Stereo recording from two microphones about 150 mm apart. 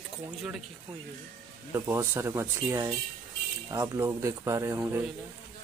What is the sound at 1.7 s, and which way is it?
Speech, 20° right (ahead or behind).